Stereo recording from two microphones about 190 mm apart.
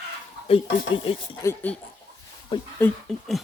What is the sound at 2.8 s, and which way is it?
Speech, centre (ahead or behind).